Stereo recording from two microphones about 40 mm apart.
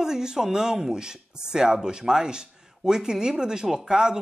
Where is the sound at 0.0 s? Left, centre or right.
Centre.